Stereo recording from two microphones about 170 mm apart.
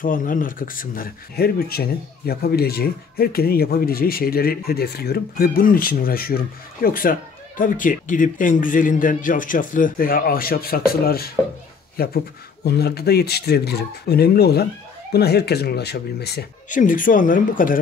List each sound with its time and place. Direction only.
0.0 s speech: 55° left (ahead or behind); by 16.4 s 70° left (ahead or behind)
16.6 s speech: 50° left (ahead or behind)